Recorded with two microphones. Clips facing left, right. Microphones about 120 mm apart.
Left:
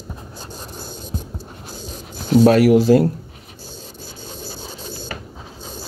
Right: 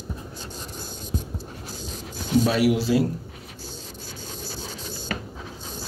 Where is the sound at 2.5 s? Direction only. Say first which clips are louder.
Left 11 dB; 45° left (ahead or behind).